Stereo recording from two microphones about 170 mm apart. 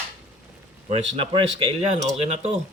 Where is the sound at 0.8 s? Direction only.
40° right (ahead or behind).